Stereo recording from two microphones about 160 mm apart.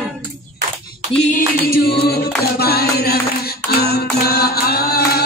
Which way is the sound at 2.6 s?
80° left.